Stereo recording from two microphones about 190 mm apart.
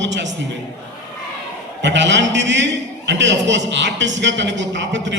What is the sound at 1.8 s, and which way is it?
A man's voice, 70° right (ahead or behind).